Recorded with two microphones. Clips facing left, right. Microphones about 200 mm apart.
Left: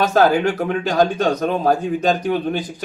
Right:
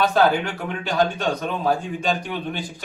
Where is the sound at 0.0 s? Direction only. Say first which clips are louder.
Left 4 dB; 45° left (ahead or behind).